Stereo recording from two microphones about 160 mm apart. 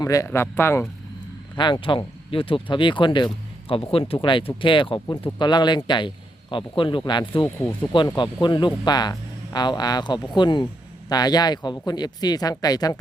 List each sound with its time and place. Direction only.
0.0 s speech: 20° left (ahead or behind)
1.5 s speech: 30° left (ahead or behind)